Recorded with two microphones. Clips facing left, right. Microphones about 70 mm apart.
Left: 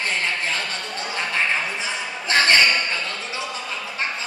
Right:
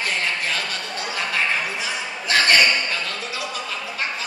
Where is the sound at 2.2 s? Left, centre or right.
Left.